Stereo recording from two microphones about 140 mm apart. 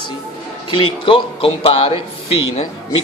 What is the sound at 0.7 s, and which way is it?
A man's voice, 35° left (ahead or behind).